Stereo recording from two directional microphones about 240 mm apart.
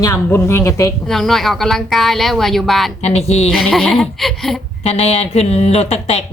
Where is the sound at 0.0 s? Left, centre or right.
Centre.